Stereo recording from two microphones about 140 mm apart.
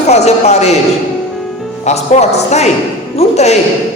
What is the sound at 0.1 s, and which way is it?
Speech, 50° left (ahead or behind).